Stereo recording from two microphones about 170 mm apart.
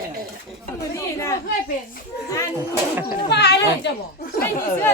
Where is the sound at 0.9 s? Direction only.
20° left (ahead or behind).